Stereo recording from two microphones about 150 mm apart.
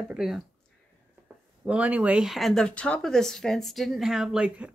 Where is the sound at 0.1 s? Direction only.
5° right (ahead or behind).